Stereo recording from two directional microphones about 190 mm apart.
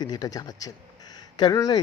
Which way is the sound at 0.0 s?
20° left (ahead or behind).